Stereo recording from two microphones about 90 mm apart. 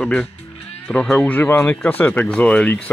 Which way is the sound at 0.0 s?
10° left (ahead or behind).